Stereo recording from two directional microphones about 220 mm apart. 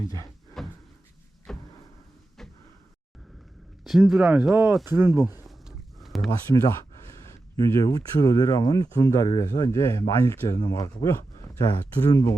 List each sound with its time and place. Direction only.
0.6 s cupboard open or close: centre (ahead or behind)
1.5 s a sound: centre (ahead or behind)
3.8 s speech: centre (ahead or behind)
5.2 s speech: 15° left (ahead or behind)
5.5 s a sound: centre (ahead or behind)
7.3 s speech: 15° left (ahead or behind)